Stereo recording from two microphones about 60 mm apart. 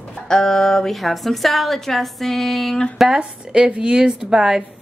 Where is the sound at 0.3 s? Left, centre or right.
Centre.